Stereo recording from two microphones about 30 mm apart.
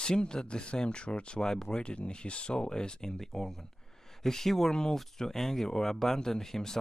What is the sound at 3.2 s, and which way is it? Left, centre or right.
Speech, centre.